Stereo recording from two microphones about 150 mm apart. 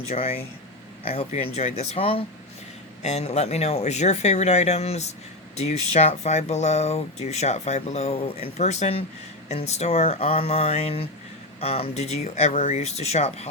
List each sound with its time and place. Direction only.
0.1 s speech: 40° left (ahead or behind)